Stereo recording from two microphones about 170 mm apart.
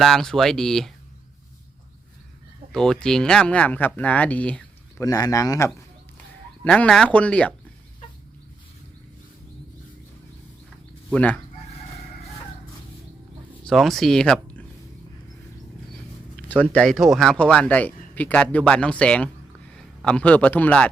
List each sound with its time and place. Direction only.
0.0 s speech: centre (ahead or behind)
2.7 s speech: 5° left (ahead or behind)
5.0 s speech: 20° left (ahead or behind)
6.7 s speech: 5° left (ahead or behind)
11.1 s speech: 5° left (ahead or behind)
13.7 s speech: centre (ahead or behind)
16.5 s speech: 10° left (ahead or behind)